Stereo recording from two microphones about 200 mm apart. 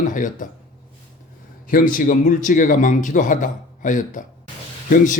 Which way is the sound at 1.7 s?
40° left (ahead or behind).